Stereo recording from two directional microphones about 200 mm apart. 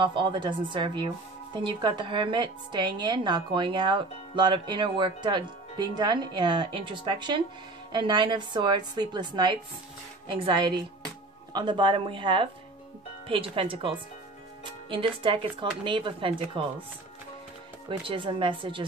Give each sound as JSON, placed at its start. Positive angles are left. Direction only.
{"t": 0.0, "sound": "speech", "side_deg": -25}
{"t": 17.8, "sound": "speech", "side_deg": -25}